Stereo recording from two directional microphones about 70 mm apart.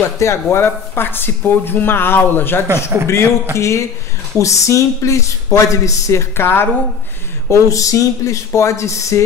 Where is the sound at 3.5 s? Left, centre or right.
Left.